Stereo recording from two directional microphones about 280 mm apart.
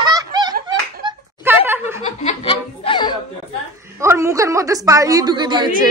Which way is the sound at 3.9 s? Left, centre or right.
Centre.